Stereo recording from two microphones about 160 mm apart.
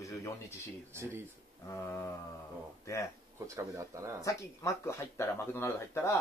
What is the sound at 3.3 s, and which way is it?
Speech, 20° right (ahead or behind).